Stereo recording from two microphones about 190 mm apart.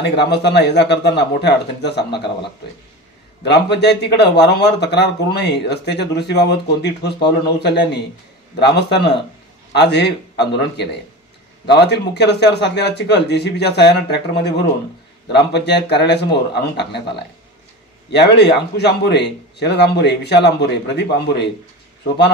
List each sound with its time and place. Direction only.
0.0 s speech: 60° left (ahead or behind)
3.4 s speech: 60° left (ahead or behind)